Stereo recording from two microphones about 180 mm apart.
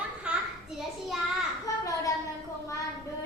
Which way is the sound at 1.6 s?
20° left (ahead or behind).